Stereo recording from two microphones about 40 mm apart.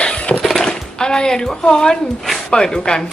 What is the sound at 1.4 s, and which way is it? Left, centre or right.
Speech, centre.